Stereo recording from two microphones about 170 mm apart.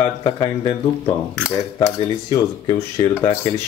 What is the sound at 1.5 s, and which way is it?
Speech, 20° left (ahead or behind).